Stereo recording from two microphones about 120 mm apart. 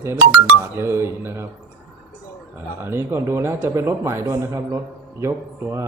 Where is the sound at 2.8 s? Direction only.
20° right (ahead or behind).